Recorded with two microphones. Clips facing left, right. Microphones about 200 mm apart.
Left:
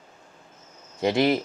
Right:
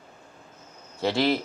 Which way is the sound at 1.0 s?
15° left (ahead or behind).